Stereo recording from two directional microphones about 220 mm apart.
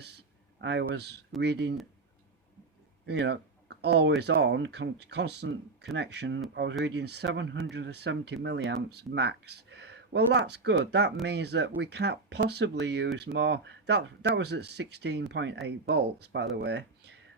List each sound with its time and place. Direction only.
0.0 s a sound: 50° right (ahead or behind)
1.4 s speech: 50° right (ahead or behind)
3.1 s speech: 50° right (ahead or behind)